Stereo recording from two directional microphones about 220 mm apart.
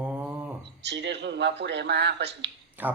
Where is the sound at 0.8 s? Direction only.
50° right (ahead or behind).